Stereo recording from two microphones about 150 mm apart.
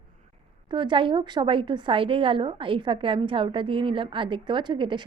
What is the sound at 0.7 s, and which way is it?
A woman's voice, 30° right (ahead or behind).